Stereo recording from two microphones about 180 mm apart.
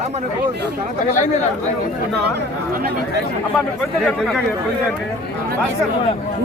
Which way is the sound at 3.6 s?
5° left (ahead or behind).